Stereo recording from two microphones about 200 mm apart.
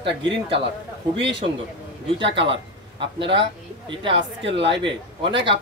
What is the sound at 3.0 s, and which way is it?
Speech, 25° right (ahead or behind).